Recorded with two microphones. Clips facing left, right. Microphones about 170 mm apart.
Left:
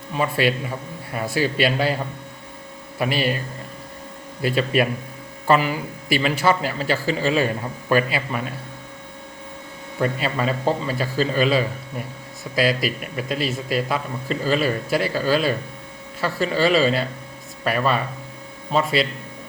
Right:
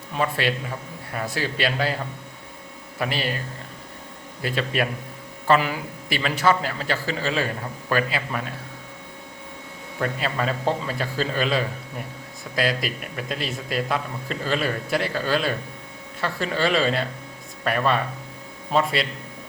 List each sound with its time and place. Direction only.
0.1 s a man's voice: 10° left (ahead or behind)
3.0 s a man's voice: 10° left (ahead or behind)
4.4 s a man's voice: 10° left (ahead or behind)
10.0 s a man's voice: 5° left (ahead or behind)